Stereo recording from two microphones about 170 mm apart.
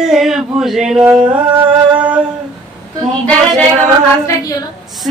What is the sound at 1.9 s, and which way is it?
Humming, 5° right (ahead or behind).